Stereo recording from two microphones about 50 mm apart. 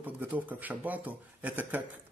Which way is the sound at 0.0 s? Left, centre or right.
Right.